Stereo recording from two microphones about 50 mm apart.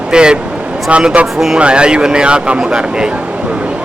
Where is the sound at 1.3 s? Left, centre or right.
Centre.